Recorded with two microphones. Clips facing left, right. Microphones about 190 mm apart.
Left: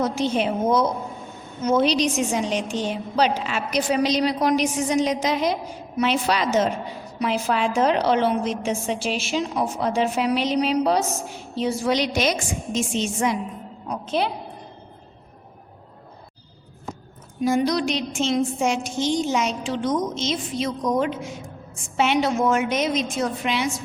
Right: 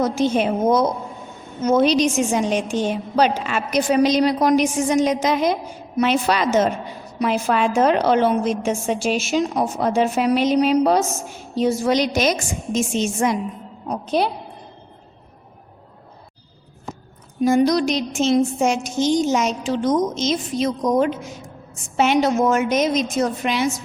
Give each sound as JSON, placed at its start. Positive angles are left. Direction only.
{"t": 0.0, "sound": "a woman's voice", "side_deg": -45}
{"t": 17.4, "sound": "a woman's voice", "side_deg": -45}